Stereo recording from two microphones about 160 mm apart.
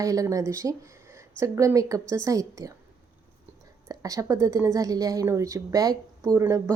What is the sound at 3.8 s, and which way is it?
A woman's voice, 20° right (ahead or behind).